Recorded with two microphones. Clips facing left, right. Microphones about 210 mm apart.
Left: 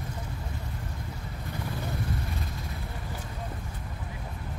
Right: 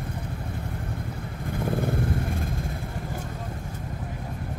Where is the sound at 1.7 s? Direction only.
50° right (ahead or behind).